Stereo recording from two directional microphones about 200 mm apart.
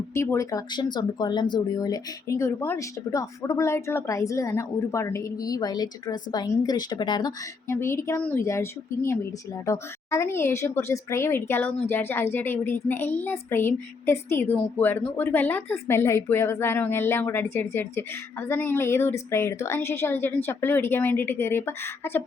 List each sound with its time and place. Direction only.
0.1 s speech: 15° left (ahead or behind)